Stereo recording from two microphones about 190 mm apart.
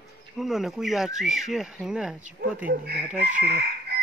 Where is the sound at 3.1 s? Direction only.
40° right (ahead or behind).